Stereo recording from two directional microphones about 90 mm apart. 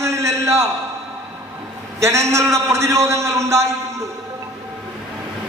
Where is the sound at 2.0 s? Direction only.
35° right (ahead or behind).